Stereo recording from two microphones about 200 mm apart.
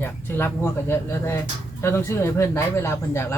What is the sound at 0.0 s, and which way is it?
A woman's voice, 10° left (ahead or behind).